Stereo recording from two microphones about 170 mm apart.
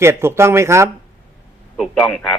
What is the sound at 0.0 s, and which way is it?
Speech, 15° right (ahead or behind).